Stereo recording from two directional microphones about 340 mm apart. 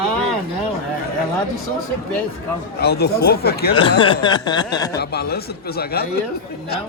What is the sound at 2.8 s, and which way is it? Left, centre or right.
Speech, left.